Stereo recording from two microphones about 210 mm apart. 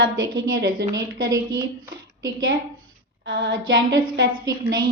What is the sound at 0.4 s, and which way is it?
Speech, 65° right (ahead or behind).